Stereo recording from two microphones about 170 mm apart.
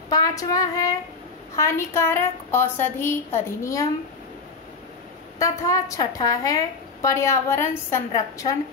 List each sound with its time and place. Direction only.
0.1 s a woman's voice: 20° left (ahead or behind)
5.4 s a woman's voice: 20° left (ahead or behind)